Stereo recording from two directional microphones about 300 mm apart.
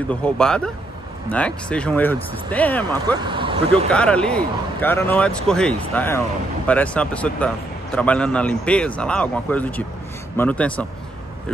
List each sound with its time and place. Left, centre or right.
0.1 s speech: centre
3.2 s speech: centre
3.9 s speech: centre